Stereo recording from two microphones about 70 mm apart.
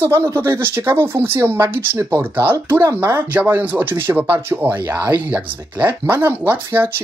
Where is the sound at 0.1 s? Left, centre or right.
Right.